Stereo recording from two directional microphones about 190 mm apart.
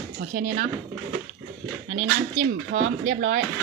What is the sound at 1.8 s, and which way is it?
Speech, 40° right (ahead or behind).